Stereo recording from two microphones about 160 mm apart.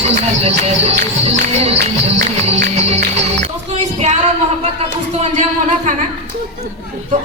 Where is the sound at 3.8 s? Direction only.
45° right (ahead or behind).